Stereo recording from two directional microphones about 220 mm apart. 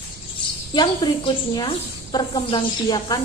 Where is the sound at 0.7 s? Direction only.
20° left (ahead or behind).